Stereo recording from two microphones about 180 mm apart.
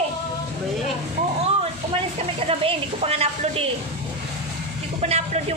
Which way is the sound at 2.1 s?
35° right (ahead or behind).